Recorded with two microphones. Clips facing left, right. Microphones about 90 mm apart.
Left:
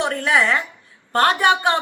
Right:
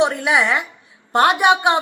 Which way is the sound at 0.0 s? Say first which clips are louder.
Right 2 dB; 15° right (ahead or behind).